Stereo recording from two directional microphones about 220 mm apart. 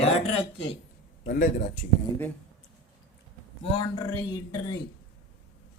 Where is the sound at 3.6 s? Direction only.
20° left (ahead or behind).